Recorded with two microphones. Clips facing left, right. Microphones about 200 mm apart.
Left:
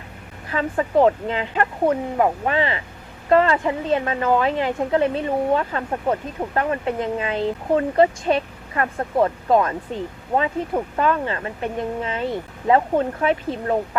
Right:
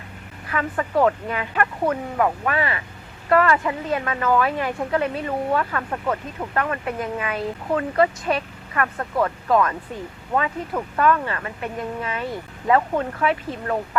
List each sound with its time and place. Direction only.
0.5 s a woman's voice: 25° left (ahead or behind)